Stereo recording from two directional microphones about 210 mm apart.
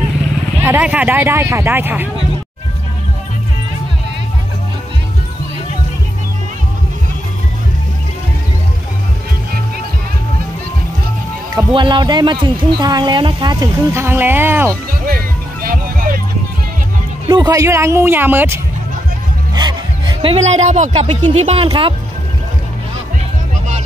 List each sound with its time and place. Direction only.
0.6 s speech: 10° right (ahead or behind)
11.5 s speech: 20° right (ahead or behind)
15.6 s music: 40° right (ahead or behind)
17.3 s speech: 15° right (ahead or behind)
19.5 s speech: 20° right (ahead or behind)